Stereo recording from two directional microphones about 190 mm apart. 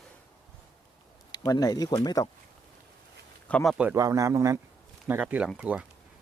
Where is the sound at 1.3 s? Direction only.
20° left (ahead or behind).